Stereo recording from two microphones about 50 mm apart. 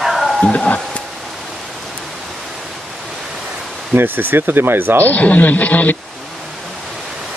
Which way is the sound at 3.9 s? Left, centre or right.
Right.